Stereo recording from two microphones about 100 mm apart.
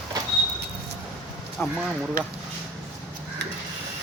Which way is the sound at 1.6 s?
20° left (ahead or behind).